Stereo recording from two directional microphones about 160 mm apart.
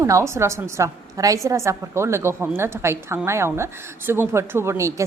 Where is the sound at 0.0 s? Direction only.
20° right (ahead or behind).